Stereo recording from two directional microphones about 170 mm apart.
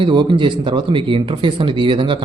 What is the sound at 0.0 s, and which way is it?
A man's voice, 25° right (ahead or behind).